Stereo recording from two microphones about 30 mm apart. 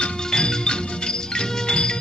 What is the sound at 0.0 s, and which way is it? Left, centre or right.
Music, left.